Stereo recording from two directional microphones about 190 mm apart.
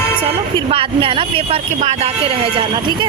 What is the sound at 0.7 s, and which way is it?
Speech, 30° right (ahead or behind).